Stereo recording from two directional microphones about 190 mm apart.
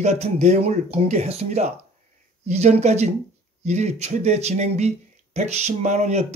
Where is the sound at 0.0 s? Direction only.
35° right (ahead or behind).